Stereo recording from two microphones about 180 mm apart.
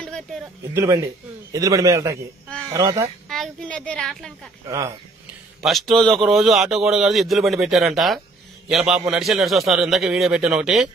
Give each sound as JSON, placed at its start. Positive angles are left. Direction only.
{"t": 0.7, "sound": "a man's voice", "side_deg": -15}
{"t": 3.3, "sound": "a woman's voice", "side_deg": 5}
{"t": 4.6, "sound": "speech", "side_deg": -15}
{"t": 5.6, "sound": "speech", "side_deg": 0}